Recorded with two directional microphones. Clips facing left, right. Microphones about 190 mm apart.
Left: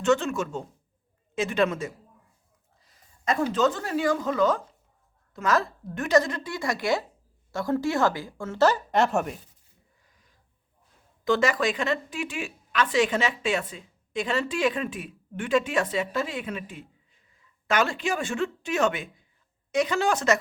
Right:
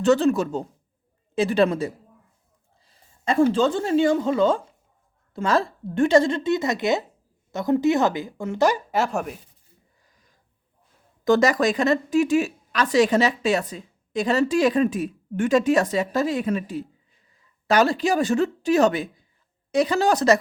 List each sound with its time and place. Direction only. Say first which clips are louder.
0.0 s a woman's voice: right 5 dB; 35° right (ahead or behind)
2.8 s a sound: right 2 dB; 30° right (ahead or behind)
3.5 s a woman's voice: right 4 dB; 30° right (ahead or behind); by 9.4 s centre (ahead or behind)
11.3 s a woman's voice: right 5 dB; 40° right (ahead or behind)